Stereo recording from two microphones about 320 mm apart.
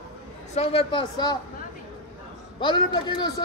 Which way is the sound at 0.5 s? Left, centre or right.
Centre.